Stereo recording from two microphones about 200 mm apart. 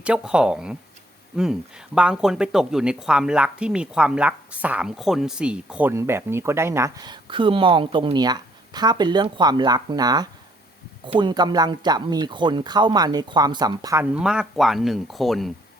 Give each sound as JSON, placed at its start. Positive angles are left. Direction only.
{"t": 0.0, "sound": "speech", "side_deg": -5}